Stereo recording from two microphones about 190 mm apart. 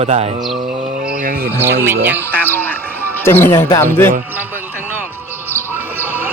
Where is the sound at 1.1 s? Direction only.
50° right (ahead or behind).